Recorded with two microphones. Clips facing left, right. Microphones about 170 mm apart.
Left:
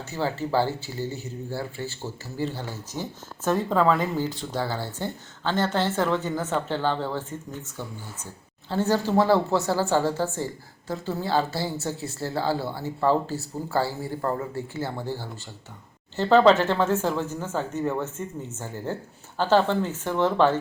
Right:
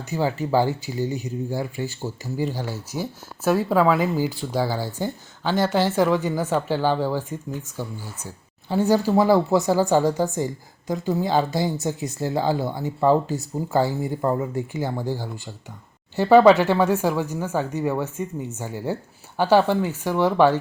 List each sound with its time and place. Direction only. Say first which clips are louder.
0.1 s speech: right 4 dB; 15° right (ahead or behind)